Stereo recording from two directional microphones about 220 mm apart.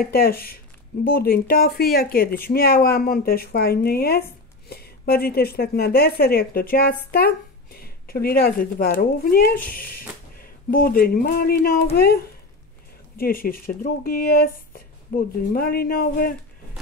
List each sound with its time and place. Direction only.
0.0 s a woman's voice: 45° left (ahead or behind)